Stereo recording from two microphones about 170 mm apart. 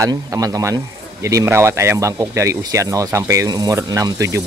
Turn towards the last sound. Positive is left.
turn(degrees=-15)  # may be behind; listen again after turning